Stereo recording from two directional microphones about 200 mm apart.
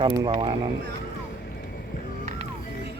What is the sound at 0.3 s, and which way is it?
Speech, 25° right (ahead or behind).